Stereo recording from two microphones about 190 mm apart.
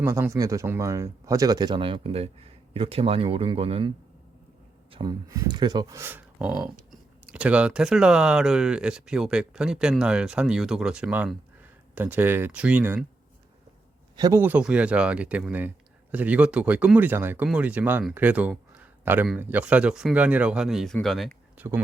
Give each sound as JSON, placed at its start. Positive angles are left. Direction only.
{"t": 0.0, "sound": "speech", "side_deg": -15}
{"t": 14.2, "sound": "speech", "side_deg": -15}